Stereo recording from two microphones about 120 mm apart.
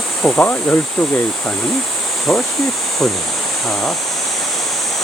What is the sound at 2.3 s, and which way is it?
Speech, 5° left (ahead or behind).